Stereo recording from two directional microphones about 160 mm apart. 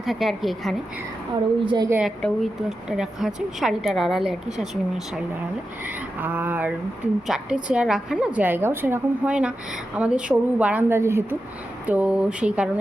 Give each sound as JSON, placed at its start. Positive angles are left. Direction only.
{"t": 0.0, "sound": "a woman's voice", "side_deg": 0}
{"t": 1.6, "sound": "a woman's voice", "side_deg": -25}
{"t": 1.9, "sound": "a woman's voice", "side_deg": -5}